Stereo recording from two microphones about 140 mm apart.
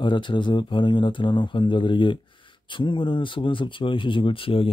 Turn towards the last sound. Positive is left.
turn(degrees=40)  # may be behind; listen again after turning